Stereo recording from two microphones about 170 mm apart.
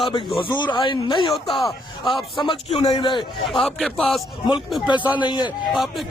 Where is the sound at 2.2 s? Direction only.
30° left (ahead or behind).